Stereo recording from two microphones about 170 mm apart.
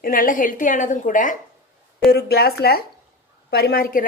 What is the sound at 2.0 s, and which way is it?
A woman's voice, 70° left (ahead or behind).